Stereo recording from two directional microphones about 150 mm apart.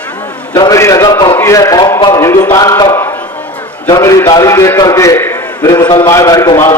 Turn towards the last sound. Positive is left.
turn(degrees=20)  # may be behind; listen again after turning